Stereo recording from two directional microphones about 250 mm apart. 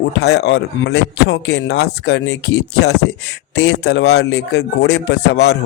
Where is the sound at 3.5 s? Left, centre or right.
Left.